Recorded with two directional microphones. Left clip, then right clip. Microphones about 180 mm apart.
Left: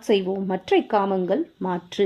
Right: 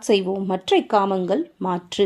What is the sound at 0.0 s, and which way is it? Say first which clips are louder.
Speech: right 2 dB; 35° right (ahead or behind).